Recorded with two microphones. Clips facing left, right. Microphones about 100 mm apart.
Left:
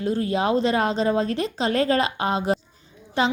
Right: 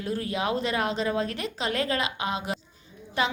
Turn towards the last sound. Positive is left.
turn(degrees=30)  # may be behind; listen again after turning